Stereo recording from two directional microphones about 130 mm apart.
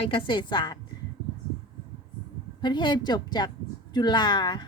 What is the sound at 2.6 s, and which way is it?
A woman's voice, 35° left (ahead or behind).